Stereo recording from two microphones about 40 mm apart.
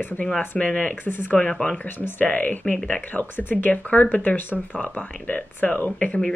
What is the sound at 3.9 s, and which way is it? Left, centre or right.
Speech, left.